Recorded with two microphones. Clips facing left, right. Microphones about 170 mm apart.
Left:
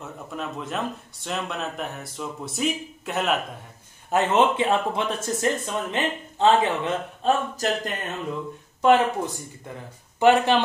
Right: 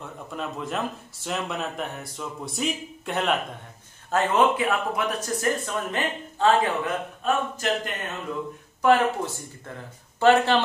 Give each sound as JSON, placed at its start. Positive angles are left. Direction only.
{"t": 0.0, "sound": "speech", "side_deg": 0}
{"t": 4.1, "sound": "speech", "side_deg": 20}
{"t": 7.2, "sound": "speech", "side_deg": 40}
{"t": 8.8, "sound": "speech", "side_deg": 20}